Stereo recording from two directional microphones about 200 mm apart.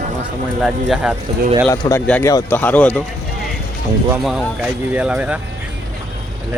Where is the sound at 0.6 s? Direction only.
5° right (ahead or behind).